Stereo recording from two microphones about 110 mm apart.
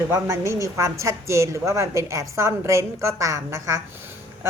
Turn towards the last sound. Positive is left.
turn(degrees=-25)  # may be behind; listen again after turning